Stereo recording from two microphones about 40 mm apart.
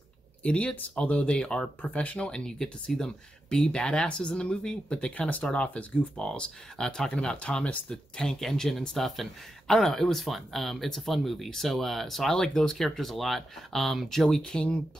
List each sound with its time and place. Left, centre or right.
0.4 s speech: left
1.3 s speech: centre
1.9 s speech: left
6.2 s speech: centre
14.4 s speech: left